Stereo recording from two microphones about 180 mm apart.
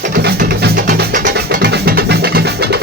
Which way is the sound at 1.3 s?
60° right (ahead or behind).